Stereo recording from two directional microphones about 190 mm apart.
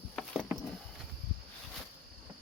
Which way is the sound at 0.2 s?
Centre (ahead or behind).